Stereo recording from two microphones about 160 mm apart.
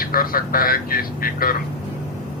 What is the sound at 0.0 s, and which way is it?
Speech, 65° left (ahead or behind).